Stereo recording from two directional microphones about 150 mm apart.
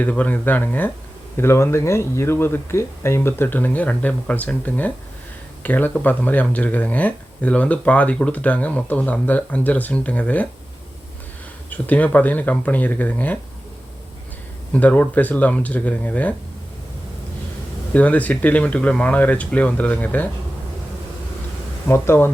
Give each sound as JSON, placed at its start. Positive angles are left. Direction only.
{"t": 0.0, "sound": "speech", "side_deg": 10}
{"t": 11.7, "sound": "speech", "side_deg": 10}
{"t": 14.7, "sound": "speech", "side_deg": 10}
{"t": 17.9, "sound": "speech", "side_deg": 10}
{"t": 21.8, "sound": "speech", "side_deg": 15}